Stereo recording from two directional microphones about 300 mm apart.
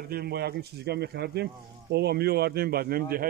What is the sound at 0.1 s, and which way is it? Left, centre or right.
Speech, right.